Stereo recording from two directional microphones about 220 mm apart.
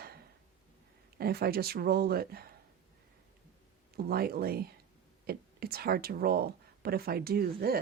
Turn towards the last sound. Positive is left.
turn(degrees=-45)  # may be behind; listen again after turning